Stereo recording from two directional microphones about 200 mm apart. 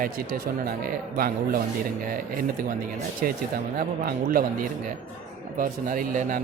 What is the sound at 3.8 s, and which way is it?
Speech, 45° right (ahead or behind).